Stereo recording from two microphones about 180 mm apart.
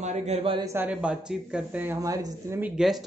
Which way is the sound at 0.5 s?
15° right (ahead or behind).